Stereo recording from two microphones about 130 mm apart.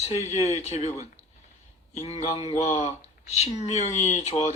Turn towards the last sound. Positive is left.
turn(degrees=60)  # may be behind; listen again after turning